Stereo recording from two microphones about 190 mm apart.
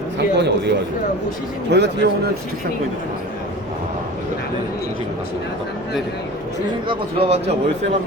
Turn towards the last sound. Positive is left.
turn(degrees=-30)  # may be behind; listen again after turning